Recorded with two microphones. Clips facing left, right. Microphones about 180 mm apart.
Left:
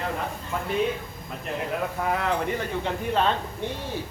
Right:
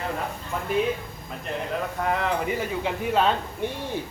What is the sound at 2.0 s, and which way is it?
Speech, centre (ahead or behind).